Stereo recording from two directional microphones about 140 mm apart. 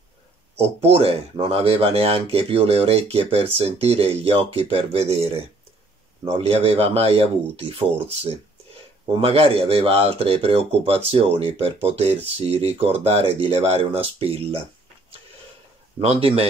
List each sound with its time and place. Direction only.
0.6 s speech: 45° right (ahead or behind)
9.2 s speech: 45° right (ahead or behind)
16.0 s speech: 45° right (ahead or behind)